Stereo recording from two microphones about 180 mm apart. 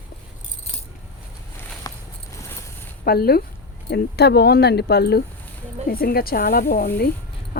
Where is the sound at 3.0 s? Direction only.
60° left (ahead or behind).